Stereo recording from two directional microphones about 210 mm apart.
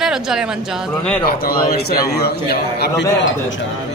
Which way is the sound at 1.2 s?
45° left (ahead or behind).